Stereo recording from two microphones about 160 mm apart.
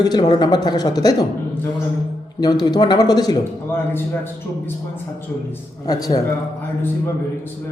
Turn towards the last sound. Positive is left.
turn(degrees=20)  # may be behind; listen again after turning